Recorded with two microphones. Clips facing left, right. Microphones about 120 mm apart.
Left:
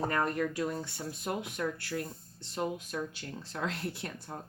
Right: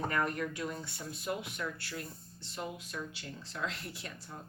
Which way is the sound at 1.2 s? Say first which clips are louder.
Left 3 dB; 50° left (ahead or behind).